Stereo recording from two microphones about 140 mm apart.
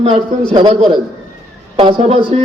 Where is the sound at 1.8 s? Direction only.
40° right (ahead or behind).